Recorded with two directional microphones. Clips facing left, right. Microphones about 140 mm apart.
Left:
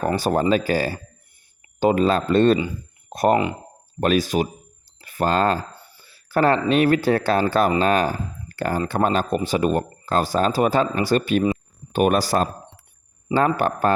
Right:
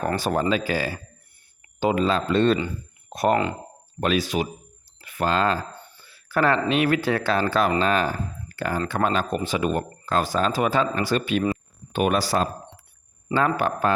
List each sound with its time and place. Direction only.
0.2 s speech: 40° left (ahead or behind)